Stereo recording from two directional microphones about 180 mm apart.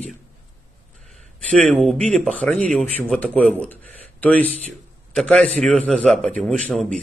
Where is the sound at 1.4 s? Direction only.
5° left (ahead or behind).